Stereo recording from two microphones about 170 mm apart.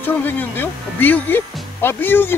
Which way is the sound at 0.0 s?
10° left (ahead or behind).